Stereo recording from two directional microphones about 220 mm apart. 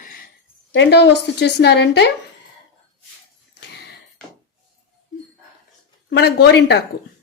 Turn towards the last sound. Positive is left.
turn(degrees=50)  # may be behind; listen again after turning